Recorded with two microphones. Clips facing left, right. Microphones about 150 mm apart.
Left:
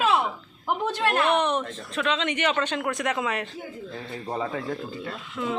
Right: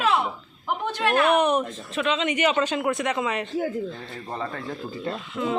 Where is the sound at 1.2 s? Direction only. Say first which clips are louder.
Right 3 dB; 10° right (ahead or behind).